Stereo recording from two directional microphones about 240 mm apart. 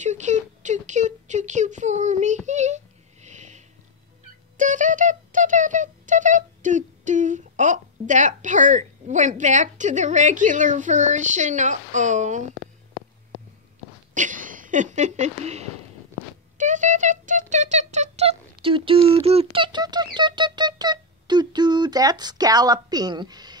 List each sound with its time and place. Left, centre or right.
0.0 s a sound: right
14.1 s speech: right
16.5 s music: right